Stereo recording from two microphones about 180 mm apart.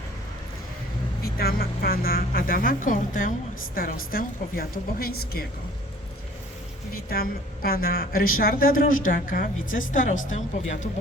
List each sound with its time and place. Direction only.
1.2 s a woman's voice: 60° left (ahead or behind)
6.9 s a woman's voice: 55° left (ahead or behind)